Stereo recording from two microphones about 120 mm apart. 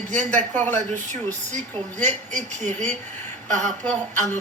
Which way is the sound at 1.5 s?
75° right (ahead or behind).